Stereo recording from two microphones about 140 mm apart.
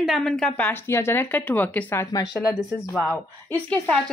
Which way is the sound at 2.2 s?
Centre (ahead or behind).